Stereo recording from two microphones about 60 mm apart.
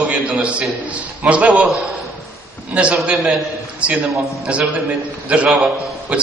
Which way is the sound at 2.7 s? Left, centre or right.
Centre.